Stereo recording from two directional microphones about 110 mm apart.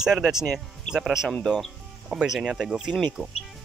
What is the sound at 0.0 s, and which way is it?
Speech, 5° right (ahead or behind).